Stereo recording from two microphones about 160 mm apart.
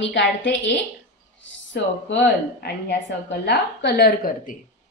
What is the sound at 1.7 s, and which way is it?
A woman's voice, 90° left.